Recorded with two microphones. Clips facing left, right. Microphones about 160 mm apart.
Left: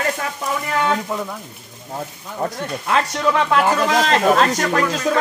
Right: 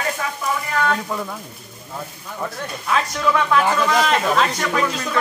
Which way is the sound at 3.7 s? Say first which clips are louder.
Left 1 dB; 35° left (ahead or behind).